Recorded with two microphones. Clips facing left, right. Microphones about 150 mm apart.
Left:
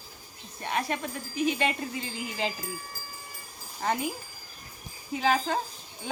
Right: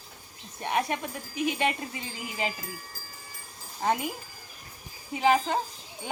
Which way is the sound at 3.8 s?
15° right (ahead or behind).